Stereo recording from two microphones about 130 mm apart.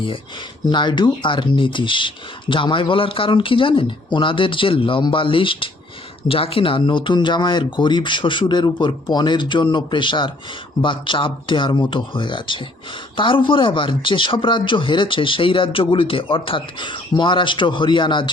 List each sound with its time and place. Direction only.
0.6 s speech: 35° left (ahead or behind)